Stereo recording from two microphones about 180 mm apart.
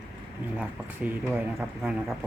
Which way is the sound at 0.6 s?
10° right (ahead or behind).